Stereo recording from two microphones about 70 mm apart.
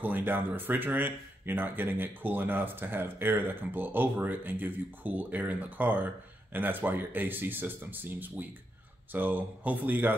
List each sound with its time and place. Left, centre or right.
0.0 s speech: right